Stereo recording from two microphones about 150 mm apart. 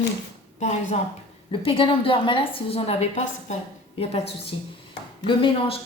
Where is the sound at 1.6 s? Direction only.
35° left (ahead or behind).